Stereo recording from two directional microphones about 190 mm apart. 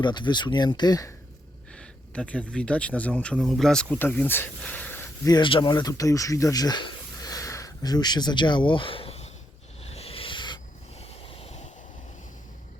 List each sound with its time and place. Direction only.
0.0 s speech: 25° left (ahead or behind)
1.7 s speech: 5° left (ahead or behind); by 9.3 s 30° left (ahead or behind)
9.8 s dog: 30° left (ahead or behind)
11.0 s ocean: 30° left (ahead or behind)